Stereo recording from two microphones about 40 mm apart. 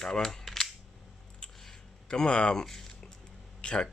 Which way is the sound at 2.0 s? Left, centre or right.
Left.